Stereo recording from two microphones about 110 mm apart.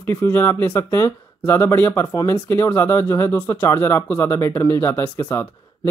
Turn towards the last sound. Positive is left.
turn(degrees=20)  # may be behind; listen again after turning